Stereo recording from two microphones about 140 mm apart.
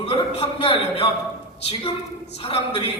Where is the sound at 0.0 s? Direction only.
45° left (ahead or behind).